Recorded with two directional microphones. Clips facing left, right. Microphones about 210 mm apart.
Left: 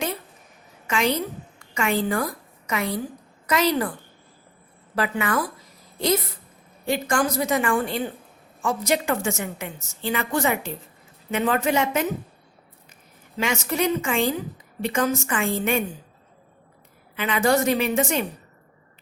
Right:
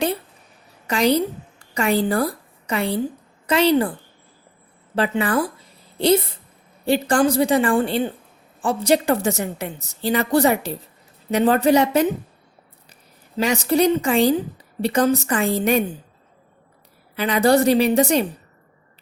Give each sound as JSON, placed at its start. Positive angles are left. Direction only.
{"t": 0.9, "sound": "a woman's voice", "side_deg": -35}
{"t": 4.9, "sound": "a woman's voice", "side_deg": -30}
{"t": 17.2, "sound": "a woman's voice", "side_deg": -35}